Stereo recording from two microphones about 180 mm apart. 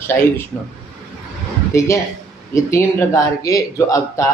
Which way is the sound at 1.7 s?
15° left (ahead or behind).